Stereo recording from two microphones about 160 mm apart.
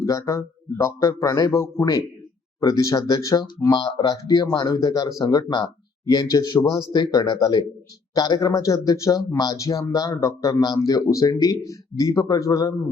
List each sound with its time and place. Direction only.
0.0 s speech: 20° left (ahead or behind)